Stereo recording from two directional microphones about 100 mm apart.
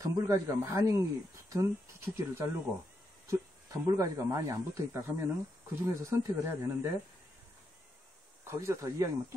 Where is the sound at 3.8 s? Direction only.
30° right (ahead or behind).